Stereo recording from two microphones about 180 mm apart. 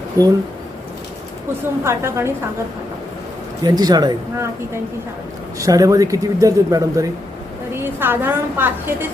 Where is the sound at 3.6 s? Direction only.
20° right (ahead or behind).